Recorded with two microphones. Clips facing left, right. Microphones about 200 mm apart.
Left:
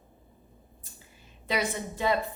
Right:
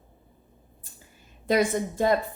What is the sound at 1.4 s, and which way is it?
Speech, 45° right (ahead or behind).